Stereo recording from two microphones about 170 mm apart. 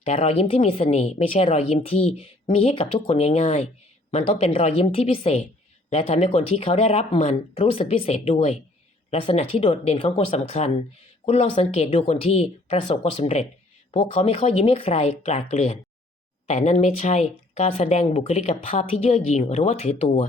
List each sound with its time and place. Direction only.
0.0 s speech: 40° left (ahead or behind)